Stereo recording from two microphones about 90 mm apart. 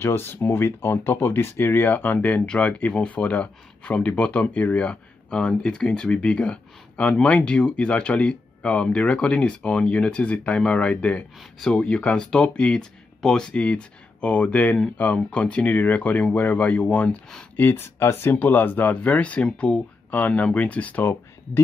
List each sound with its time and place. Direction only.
0.0 s speech: 25° left (ahead or behind)
17.6 s speech: 25° left (ahead or behind)